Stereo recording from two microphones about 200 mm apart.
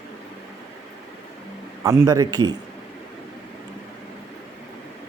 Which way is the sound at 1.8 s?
15° right (ahead or behind).